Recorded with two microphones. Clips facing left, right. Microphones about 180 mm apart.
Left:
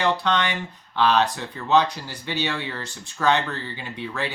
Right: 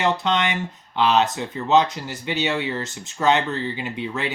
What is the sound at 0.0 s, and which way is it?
Speech, 20° right (ahead or behind).